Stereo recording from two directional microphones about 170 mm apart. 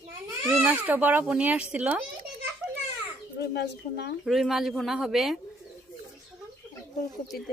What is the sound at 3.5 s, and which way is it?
Speech, 75° left (ahead or behind).